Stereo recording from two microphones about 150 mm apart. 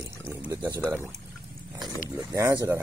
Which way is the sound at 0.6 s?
15° right (ahead or behind).